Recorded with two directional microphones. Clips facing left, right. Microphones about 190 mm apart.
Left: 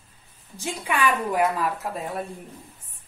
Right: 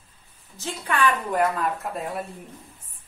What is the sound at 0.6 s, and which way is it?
A woman's voice, 10° left (ahead or behind).